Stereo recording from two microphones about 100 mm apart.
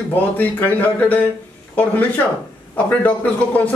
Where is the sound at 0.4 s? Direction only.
20° left (ahead or behind).